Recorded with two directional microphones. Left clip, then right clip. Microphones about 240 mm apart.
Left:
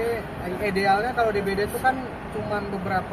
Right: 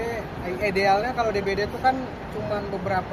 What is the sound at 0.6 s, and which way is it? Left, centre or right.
Speech, centre.